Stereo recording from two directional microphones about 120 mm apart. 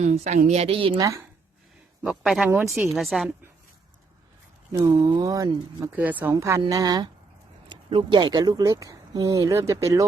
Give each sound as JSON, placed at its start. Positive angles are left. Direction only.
{"t": 0.0, "sound": "a woman's voice", "side_deg": -75}
{"t": 0.9, "sound": "speech", "side_deg": -30}
{"t": 2.0, "sound": "speech", "side_deg": -5}
{"t": 2.5, "sound": "speech", "side_deg": -20}
{"t": 2.9, "sound": "speech", "side_deg": 0}
{"t": 4.8, "sound": "speech", "side_deg": -30}
{"t": 6.0, "sound": "speech", "side_deg": -15}
{"t": 7.7, "sound": "speech", "side_deg": -45}